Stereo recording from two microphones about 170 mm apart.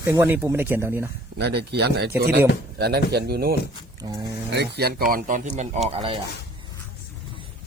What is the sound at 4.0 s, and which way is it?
Speech, 25° right (ahead or behind).